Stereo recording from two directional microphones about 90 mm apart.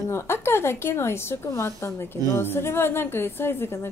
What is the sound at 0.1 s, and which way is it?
A woman's voice, 30° left (ahead or behind).